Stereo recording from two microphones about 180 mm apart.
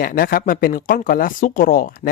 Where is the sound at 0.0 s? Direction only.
55° left (ahead or behind).